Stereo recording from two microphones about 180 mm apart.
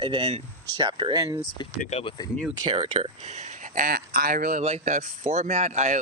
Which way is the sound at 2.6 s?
35° right (ahead or behind).